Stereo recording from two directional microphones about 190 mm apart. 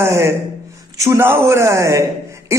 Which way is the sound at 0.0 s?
15° right (ahead or behind).